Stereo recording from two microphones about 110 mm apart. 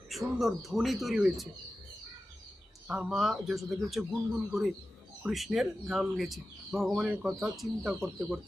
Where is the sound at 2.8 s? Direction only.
5° right (ahead or behind).